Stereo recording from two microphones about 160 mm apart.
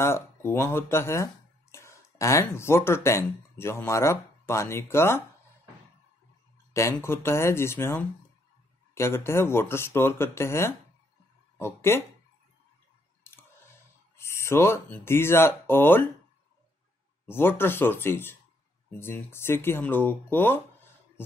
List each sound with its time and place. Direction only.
0.0 s speech: 15° left (ahead or behind)
6.7 s speech: 15° left (ahead or behind)
13.2 s a sound: 15° left (ahead or behind)
14.1 s speech: 15° left (ahead or behind)
17.3 s speech: 15° left (ahead or behind)